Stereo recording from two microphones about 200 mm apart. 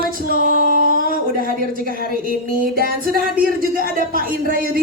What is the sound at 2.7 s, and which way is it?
Speech, 45° right (ahead or behind).